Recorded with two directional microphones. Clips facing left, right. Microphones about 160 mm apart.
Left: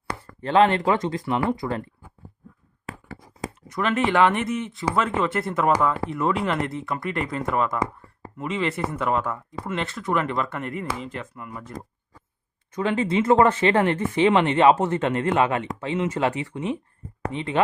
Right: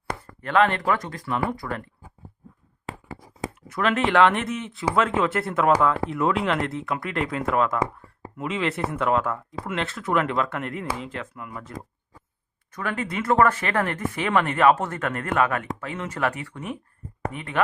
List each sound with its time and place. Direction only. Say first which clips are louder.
0.4 s speech: left 3 dB; 30° left (ahead or behind)
3.7 s speech: even; centre (ahead or behind)
12.7 s speech: left 6 dB; 25° left (ahead or behind)